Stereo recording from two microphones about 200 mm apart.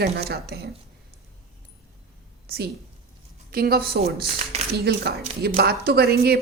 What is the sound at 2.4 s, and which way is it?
A woman's voice, 50° right (ahead or behind).